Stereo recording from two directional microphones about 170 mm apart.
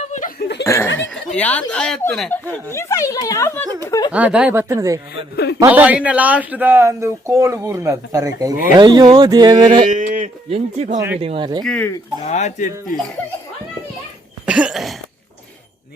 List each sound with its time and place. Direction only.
0.0 s chuckle: 45° left (ahead or behind)
0.6 s laughter: 15° left (ahead or behind)
1.4 s speech: 10° left (ahead or behind)
2.6 s speech: 15° left (ahead or behind)
4.1 s speech: 5° right (ahead or behind)
8.7 s mantra: 25° right (ahead or behind)
9.8 s speech: 50° right (ahead or behind)
10.9 s speech: 15° right (ahead or behind)
11.2 s mantra: 30° right (ahead or behind)
11.6 s speech: 5° left (ahead or behind)
12.2 s speech: 40° left (ahead or behind)
14.4 s cough: 5° right (ahead or behind)